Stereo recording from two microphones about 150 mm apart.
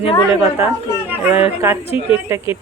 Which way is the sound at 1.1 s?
10° right (ahead or behind).